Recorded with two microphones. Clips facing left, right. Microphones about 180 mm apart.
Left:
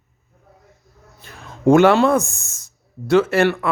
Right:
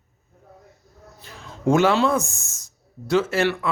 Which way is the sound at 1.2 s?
55° left (ahead or behind).